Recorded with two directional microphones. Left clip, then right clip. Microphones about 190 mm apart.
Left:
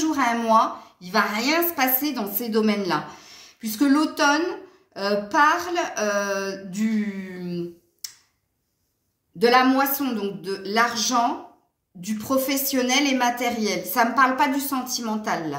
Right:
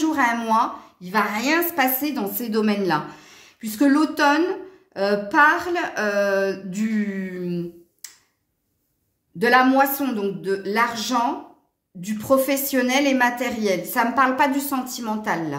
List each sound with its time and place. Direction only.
0.0 s a woman's voice: 40° right (ahead or behind)
9.4 s a woman's voice: 40° right (ahead or behind)